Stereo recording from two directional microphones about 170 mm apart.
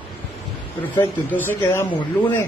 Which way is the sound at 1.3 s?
10° left (ahead or behind).